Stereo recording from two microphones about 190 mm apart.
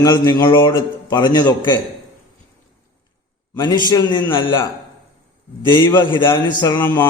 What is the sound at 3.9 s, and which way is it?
Speech, 20° left (ahead or behind).